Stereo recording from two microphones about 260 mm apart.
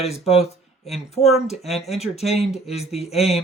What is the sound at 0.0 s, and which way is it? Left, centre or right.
Speech, left.